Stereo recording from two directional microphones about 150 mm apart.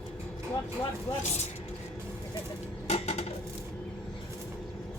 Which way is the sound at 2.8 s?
45° left (ahead or behind).